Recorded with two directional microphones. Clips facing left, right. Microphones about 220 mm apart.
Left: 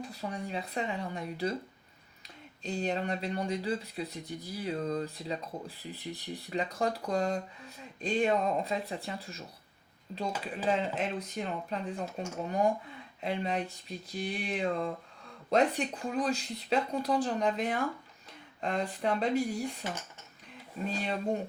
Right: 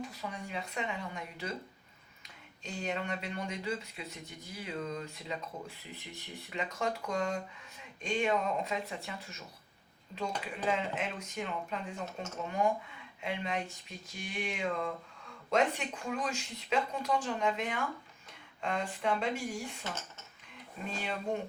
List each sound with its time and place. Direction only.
0.0 s speech: 35° left (ahead or behind)
10.7 s speech: 35° left (ahead or behind)
20.8 s speech: 35° left (ahead or behind)